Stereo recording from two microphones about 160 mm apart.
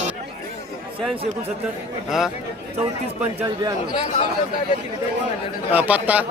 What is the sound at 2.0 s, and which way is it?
Speech, 5° right (ahead or behind).